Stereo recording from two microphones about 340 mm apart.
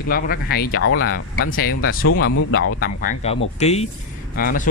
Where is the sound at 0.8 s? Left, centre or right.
Left.